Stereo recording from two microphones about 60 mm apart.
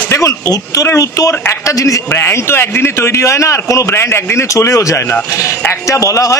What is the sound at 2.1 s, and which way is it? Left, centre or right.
A man's voice, left.